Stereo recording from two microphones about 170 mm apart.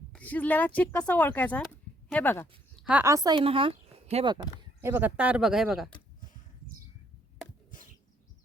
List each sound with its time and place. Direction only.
0.1 s speech: 10° left (ahead or behind)
2.8 s a woman's voice: 10° right (ahead or behind); by 4.3 s 35° right (ahead or behind)
4.8 s speech: 10° right (ahead or behind)
7.7 s a sound: 45° left (ahead or behind)